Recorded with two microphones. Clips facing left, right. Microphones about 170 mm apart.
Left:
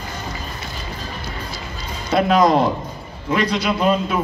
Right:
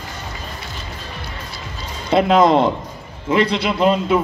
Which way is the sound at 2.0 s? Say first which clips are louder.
Right 2 dB; 25° right (ahead or behind).